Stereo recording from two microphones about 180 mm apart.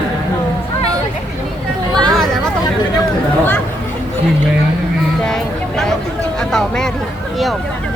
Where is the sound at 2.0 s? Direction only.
Centre (ahead or behind).